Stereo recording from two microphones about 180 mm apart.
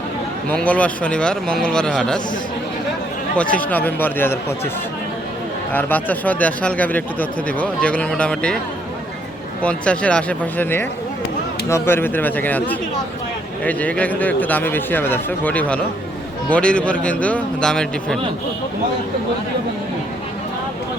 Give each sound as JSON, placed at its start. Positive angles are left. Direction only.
{"t": 0.5, "sound": "a man's voice", "side_deg": 5}
{"t": 3.3, "sound": "speech", "side_deg": 5}
{"t": 5.7, "sound": "speech", "side_deg": 10}
{"t": 9.6, "sound": "speech", "side_deg": 5}